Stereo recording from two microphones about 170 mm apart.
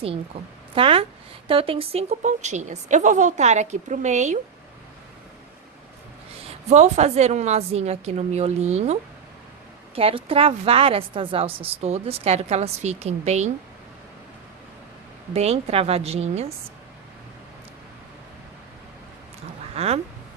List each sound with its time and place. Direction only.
0.3 s a woman's voice: 35° right (ahead or behind)
6.7 s a woman's voice: 40° right (ahead or behind)
15.3 s a woman's voice: 35° right (ahead or behind)
19.7 s speech: 35° right (ahead or behind)